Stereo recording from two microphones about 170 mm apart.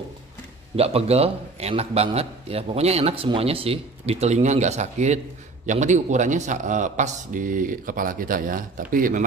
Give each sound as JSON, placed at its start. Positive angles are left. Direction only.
{"t": 0.7, "sound": "a man's voice", "side_deg": -35}